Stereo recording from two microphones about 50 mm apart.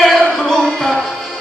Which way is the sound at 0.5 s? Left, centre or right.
Centre.